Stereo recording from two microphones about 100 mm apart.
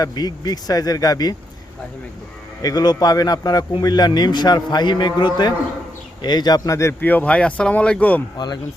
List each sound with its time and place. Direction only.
0.0 s speech: 40° left (ahead or behind)
2.6 s a man's voice: 40° left (ahead or behind)
7.0 s speech: 15° left (ahead or behind)